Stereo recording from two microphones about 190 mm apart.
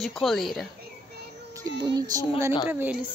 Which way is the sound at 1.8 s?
20° right (ahead or behind).